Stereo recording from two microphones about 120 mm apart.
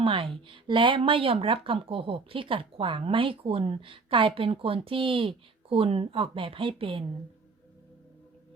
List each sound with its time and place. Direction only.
0.0 s speech: 45° right (ahead or behind)